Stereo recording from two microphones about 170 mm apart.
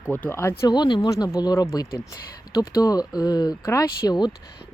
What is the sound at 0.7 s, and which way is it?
Speech, 25° left (ahead or behind).